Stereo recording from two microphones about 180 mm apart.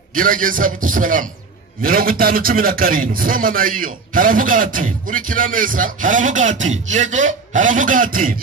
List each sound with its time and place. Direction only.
0.1 s a man's voice: 50° right (ahead or behind)